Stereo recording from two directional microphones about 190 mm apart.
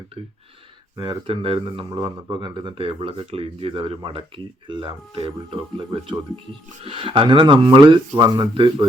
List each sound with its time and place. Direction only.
0.9 s speech: 25° right (ahead or behind)